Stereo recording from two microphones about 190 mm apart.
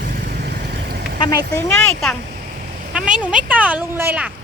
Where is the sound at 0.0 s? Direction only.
55° right (ahead or behind).